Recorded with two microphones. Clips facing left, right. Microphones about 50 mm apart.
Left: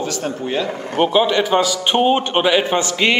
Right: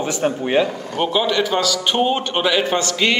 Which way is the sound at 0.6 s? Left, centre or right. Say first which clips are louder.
Left 3 dB; left.